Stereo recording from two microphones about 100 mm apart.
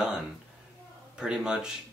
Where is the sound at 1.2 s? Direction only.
10° right (ahead or behind).